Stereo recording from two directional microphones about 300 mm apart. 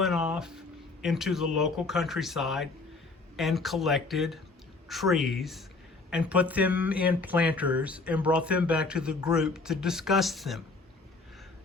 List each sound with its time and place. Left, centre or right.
0.0 s speech: centre